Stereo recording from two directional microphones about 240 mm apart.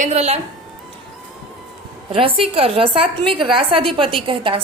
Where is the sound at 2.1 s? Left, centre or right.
Right.